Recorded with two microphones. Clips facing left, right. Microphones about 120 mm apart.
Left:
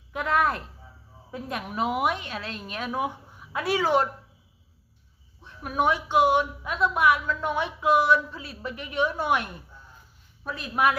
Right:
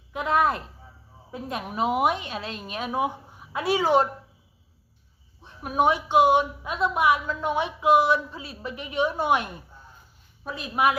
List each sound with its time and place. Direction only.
0.2 s a woman's voice: 20° right (ahead or behind)
5.5 s a woman's voice: 20° right (ahead or behind)